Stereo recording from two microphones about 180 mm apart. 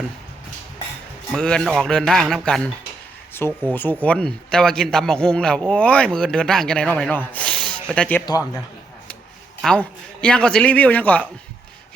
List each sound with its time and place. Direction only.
1.3 s a man's voice: 5° left (ahead or behind)
3.7 s a man's voice: 10° left (ahead or behind)
9.6 s a man's voice: 5° left (ahead or behind)